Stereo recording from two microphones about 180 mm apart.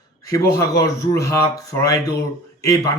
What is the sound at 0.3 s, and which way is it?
Speech, 20° left (ahead or behind).